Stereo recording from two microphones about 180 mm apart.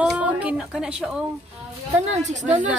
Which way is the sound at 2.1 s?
40° right (ahead or behind).